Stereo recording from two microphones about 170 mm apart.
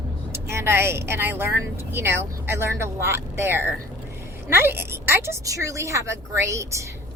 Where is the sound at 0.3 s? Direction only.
15° right (ahead or behind).